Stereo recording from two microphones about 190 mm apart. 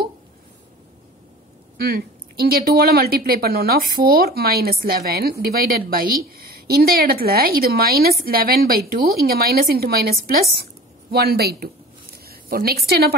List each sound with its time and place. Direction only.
1.8 s a woman's voice: 55° right (ahead or behind)